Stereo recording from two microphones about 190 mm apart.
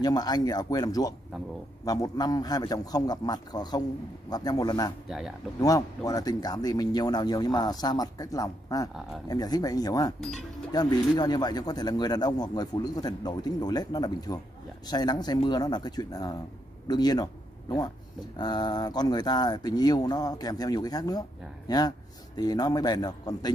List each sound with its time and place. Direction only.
0.0 s a man's voice: 20° left (ahead or behind)